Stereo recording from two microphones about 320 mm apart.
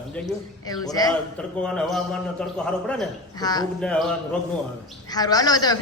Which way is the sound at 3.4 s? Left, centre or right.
Centre.